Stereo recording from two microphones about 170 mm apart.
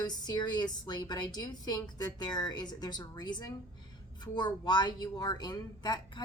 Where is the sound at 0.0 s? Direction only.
25° left (ahead or behind).